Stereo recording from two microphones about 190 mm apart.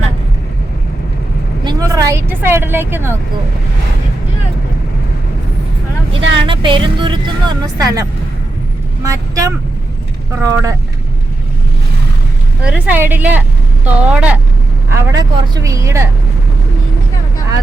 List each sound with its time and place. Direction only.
1.6 s vehicle: 20° right (ahead or behind)
6.5 s speech: 25° right (ahead or behind)
9.0 s speech: 15° right (ahead or behind)
12.6 s speech: 5° right (ahead or behind)
14.8 s speech: 20° right (ahead or behind)